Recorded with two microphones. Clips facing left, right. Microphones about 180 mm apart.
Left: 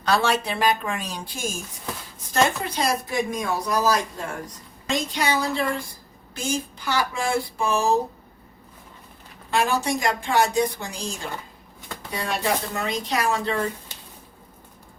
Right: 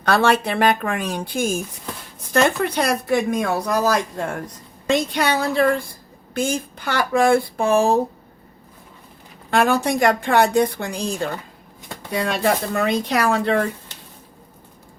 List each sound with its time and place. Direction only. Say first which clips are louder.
0.0 s a woman's voice: right 4 dB; 55° right (ahead or behind)
9.5 s a woman's voice: right 5 dB; 55° right (ahead or behind)